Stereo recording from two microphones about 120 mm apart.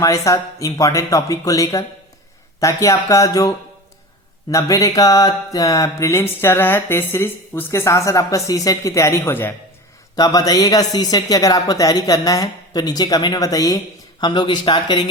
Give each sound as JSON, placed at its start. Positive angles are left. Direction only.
{"t": 0.0, "sound": "mantra", "side_deg": 25}
{"t": 4.5, "sound": "mantra", "side_deg": 30}
{"t": 10.2, "sound": "speech", "side_deg": 30}